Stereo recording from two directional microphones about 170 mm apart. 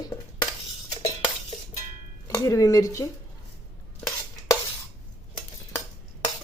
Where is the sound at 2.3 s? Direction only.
20° left (ahead or behind).